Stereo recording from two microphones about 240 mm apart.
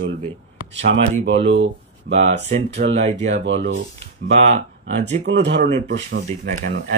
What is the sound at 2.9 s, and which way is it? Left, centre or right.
Speech, right.